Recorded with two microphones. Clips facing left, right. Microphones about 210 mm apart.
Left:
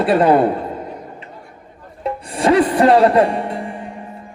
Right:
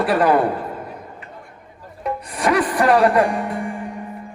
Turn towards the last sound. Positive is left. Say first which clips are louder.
# left 1 dB
turn(degrees=25)  # may be behind; listen again after turning